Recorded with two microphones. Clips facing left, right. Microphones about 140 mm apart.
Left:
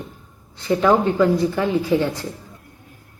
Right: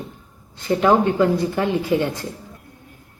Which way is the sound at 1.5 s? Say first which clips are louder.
Left 1 dB; 15° right (ahead or behind).